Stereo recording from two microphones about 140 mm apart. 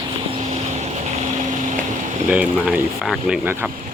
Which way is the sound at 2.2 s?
10° right (ahead or behind).